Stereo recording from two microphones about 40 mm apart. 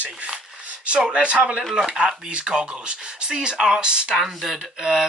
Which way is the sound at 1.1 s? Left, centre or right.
Right.